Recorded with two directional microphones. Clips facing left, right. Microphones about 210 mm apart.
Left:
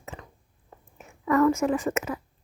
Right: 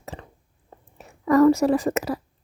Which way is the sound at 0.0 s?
35° right (ahead or behind).